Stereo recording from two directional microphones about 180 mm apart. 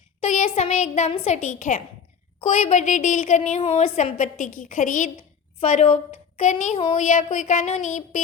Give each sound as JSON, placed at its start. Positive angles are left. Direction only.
{"t": 0.2, "sound": "a child's voice", "side_deg": 35}